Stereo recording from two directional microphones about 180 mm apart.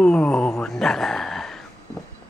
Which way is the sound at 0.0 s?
5° left (ahead or behind).